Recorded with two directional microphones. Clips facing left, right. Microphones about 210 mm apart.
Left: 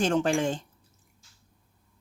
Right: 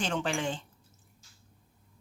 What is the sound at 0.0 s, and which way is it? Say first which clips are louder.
Speech: left 7 dB; 45° left (ahead or behind).